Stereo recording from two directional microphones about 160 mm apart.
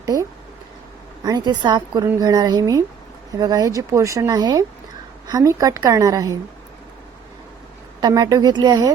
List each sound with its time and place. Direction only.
0.0 s a sound: 20° right (ahead or behind)
1.2 s speech: 25° right (ahead or behind)
8.0 s speech: 25° right (ahead or behind)